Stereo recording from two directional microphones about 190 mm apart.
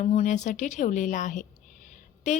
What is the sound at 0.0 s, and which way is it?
A woman's voice, 40° left (ahead or behind).